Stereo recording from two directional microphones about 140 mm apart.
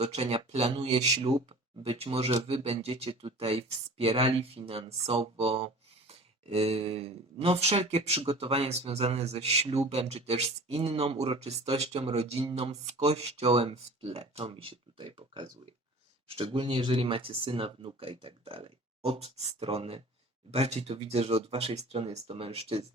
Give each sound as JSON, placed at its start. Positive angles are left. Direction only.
{"t": 0.0, "sound": "speech", "side_deg": -50}